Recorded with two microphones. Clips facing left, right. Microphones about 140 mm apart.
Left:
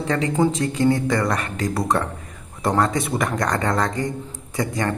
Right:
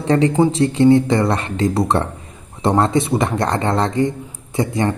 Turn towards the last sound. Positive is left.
turn(degrees=-25)  # may be behind; listen again after turning